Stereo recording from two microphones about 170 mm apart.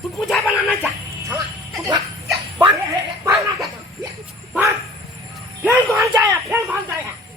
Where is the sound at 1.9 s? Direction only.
25° right (ahead or behind).